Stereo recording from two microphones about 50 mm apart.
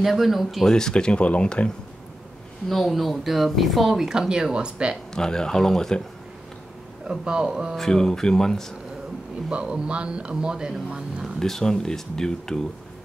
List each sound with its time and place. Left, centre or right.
0.0 s speech: centre
0.7 s speech: centre
2.7 s speech: centre
5.1 s speech: centre
7.1 s a man's voice: centre
7.7 s speech: centre
9.5 s speech: right
11.3 s speech: centre